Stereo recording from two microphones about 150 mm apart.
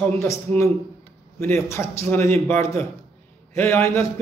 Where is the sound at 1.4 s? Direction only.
20° left (ahead or behind).